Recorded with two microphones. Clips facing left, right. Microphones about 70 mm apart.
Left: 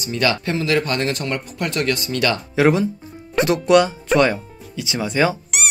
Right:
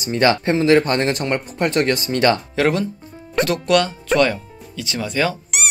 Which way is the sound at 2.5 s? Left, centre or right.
Centre.